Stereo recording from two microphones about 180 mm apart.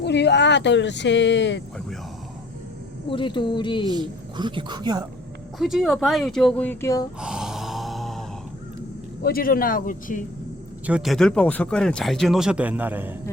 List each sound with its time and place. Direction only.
0.0 s speech: 70° left (ahead or behind)
3.1 s speech: 25° left (ahead or behind)
3.8 s a woman's voice: 25° right (ahead or behind)
5.5 s speech: centre (ahead or behind); by 7.1 s 20° left (ahead or behind)
7.2 s gasp: 5° right (ahead or behind)
9.2 s speech: 55° left (ahead or behind)
10.8 s speech: 5° right (ahead or behind)